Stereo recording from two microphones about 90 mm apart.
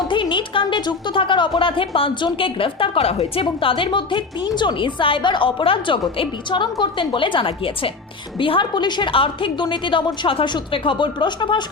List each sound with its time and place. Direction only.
0.1 s a woman's voice: 65° left (ahead or behind)